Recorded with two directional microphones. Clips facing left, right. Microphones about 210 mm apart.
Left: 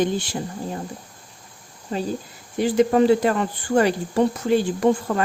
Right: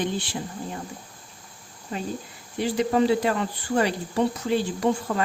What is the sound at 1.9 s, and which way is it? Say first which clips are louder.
Speech: left 5 dB; 30° left (ahead or behind).